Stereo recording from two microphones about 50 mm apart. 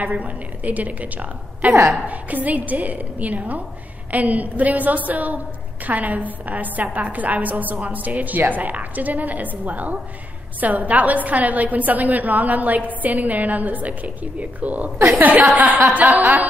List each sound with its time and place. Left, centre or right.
0.0 s a woman's voice: right